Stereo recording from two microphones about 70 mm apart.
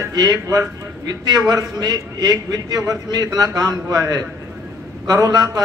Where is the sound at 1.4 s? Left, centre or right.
Right.